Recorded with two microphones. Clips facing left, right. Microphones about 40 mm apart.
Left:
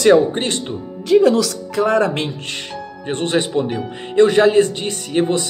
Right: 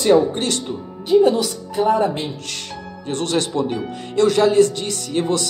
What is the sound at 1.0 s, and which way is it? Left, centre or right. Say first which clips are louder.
Speech: left 2 dB; left.